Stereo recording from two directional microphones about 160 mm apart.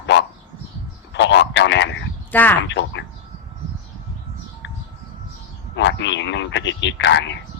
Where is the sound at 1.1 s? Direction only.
90° left.